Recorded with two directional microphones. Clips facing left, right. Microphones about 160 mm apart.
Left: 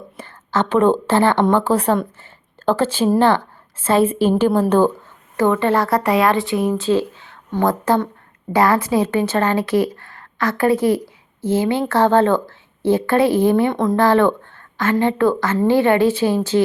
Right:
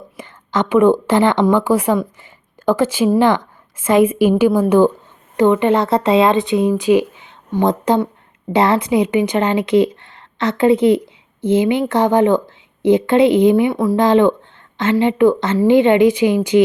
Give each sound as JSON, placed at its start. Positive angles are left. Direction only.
{"t": 0.2, "sound": "a woman's voice", "side_deg": -15}